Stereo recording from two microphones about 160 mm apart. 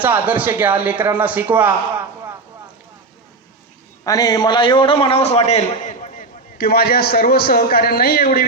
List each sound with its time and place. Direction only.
0.0 s speech: 10° right (ahead or behind)
4.0 s a man's voice: 20° left (ahead or behind); by 6.2 s 50° left (ahead or behind)
6.6 s a man's voice: 70° left (ahead or behind)